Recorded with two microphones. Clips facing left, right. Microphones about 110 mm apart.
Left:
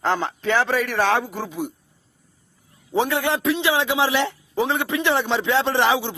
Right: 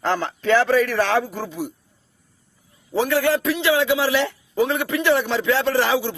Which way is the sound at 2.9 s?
20° left (ahead or behind).